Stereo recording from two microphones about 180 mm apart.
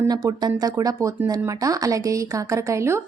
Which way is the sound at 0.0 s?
20° right (ahead or behind).